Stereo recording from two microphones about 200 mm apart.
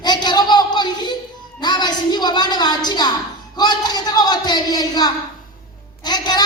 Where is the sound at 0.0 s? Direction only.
20° left (ahead or behind).